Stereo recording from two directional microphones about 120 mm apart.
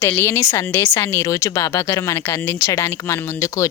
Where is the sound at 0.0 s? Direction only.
20° left (ahead or behind).